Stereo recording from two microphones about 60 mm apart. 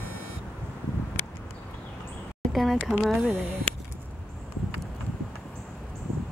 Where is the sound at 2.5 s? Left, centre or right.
Centre.